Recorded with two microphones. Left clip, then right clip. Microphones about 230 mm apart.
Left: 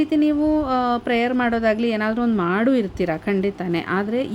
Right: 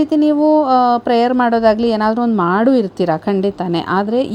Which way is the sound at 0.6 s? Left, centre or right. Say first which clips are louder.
Right 9 dB; centre.